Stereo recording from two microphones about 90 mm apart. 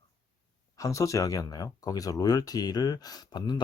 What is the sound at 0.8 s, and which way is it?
Speech, 35° left (ahead or behind).